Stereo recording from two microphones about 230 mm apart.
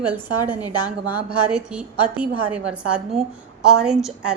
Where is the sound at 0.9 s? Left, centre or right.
Centre.